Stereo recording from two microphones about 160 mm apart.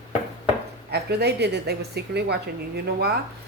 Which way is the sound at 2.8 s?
80° right.